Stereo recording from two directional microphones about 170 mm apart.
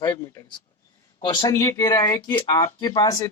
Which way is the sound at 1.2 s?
20° left (ahead or behind).